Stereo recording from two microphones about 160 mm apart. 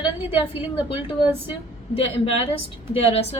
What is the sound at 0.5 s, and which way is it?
Speech, 15° right (ahead or behind).